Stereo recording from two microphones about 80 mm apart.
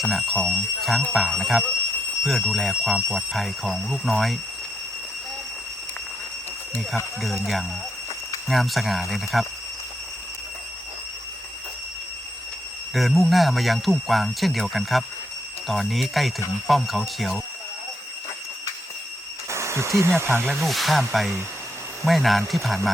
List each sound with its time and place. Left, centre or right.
0.0 s speech: centre
8.4 s speech: centre
12.9 s speech: centre
19.5 s speech: right
20.3 s speech: centre